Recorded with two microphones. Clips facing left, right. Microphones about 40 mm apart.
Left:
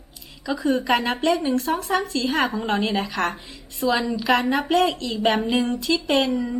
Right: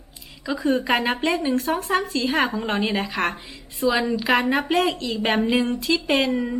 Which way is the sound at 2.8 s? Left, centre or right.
Centre.